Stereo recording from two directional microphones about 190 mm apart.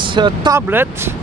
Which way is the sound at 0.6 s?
10° right (ahead or behind).